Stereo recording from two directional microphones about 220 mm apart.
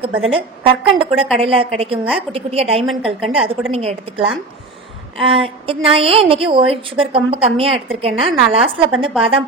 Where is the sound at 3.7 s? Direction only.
30° right (ahead or behind).